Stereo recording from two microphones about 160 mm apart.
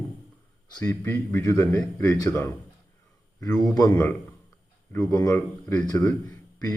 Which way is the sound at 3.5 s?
Centre (ahead or behind).